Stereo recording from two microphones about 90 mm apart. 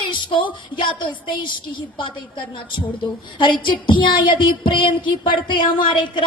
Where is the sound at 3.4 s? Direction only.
60° left (ahead or behind).